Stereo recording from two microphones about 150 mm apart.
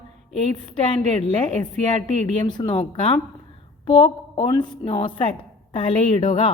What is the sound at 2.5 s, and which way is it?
A woman's voice, 30° left (ahead or behind).